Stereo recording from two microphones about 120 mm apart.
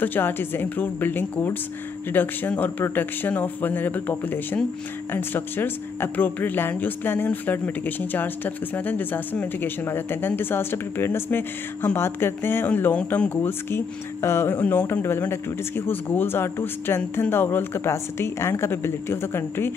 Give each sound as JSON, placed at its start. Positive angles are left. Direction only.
{"t": 0.0, "sound": "speech", "side_deg": 15}